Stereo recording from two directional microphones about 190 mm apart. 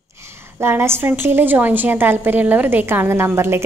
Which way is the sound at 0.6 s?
15° right (ahead or behind).